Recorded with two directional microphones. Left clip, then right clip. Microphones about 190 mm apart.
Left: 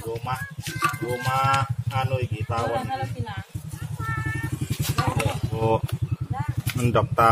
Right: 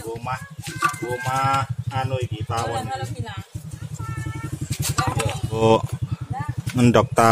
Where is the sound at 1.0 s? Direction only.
10° right (ahead or behind).